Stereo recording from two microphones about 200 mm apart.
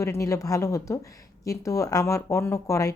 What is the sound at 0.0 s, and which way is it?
A woman's voice, 15° left (ahead or behind).